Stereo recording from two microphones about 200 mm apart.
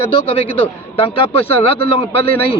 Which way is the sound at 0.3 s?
30° left (ahead or behind).